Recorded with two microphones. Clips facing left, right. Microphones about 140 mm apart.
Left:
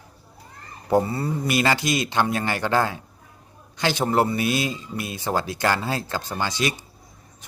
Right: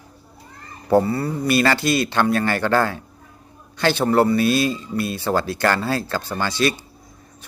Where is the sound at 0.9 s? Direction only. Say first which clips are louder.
Right 3 dB; 20° left (ahead or behind).